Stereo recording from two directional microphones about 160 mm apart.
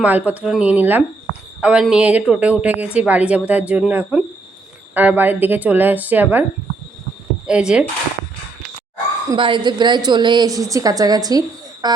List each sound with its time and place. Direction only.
0.0 s a woman's voice: 10° right (ahead or behind)
7.4 s speech: 5° right (ahead or behind)
9.3 s a woman's voice: 30° right (ahead or behind)